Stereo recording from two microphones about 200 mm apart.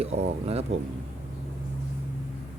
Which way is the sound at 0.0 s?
30° right (ahead or behind).